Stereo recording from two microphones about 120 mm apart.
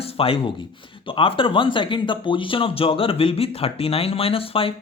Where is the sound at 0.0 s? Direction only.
55° left (ahead or behind).